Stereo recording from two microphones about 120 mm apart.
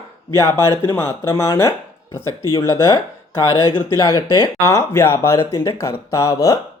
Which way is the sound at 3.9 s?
30° left (ahead or behind).